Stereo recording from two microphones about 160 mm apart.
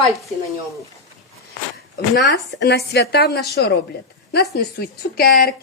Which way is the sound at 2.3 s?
90° left.